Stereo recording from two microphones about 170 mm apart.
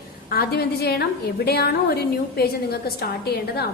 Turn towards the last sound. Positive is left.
turn(degrees=70)  # may be behind; listen again after turning